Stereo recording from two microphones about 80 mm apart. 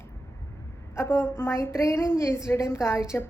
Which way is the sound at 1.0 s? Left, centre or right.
Left.